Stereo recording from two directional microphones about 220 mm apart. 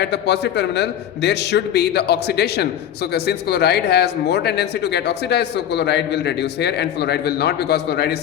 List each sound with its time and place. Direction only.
0.0 s a man's voice: 50° left (ahead or behind)